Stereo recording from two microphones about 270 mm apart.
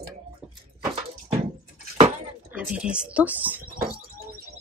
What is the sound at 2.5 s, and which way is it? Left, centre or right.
Speech, centre.